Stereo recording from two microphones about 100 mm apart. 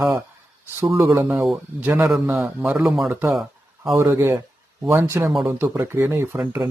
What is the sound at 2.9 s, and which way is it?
Speech, centre (ahead or behind).